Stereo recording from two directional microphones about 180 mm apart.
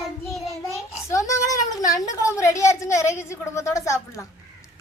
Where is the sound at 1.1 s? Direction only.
20° left (ahead or behind).